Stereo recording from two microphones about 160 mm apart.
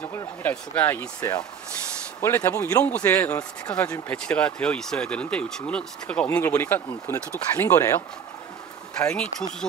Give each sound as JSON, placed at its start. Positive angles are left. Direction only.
{"t": 0.0, "sound": "speech", "side_deg": 15}
{"t": 8.9, "sound": "speech", "side_deg": 5}